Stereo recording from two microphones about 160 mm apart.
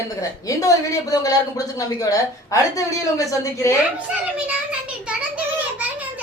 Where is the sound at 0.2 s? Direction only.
20° left (ahead or behind).